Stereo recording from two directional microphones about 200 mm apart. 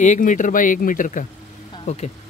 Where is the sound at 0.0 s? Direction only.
40° left (ahead or behind).